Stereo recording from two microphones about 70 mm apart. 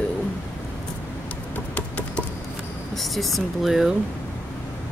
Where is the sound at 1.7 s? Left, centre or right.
Left.